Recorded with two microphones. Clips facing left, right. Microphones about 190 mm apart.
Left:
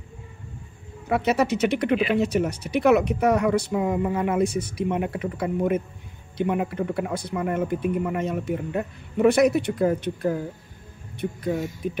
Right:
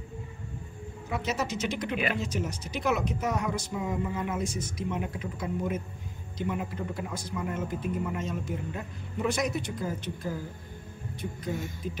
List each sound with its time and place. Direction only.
1.0 s speech: 65° left (ahead or behind)